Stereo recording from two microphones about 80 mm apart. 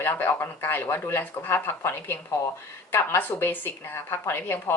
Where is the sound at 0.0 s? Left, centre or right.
Left.